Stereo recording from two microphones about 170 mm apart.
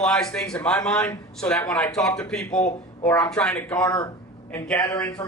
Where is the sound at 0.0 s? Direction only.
5° left (ahead or behind).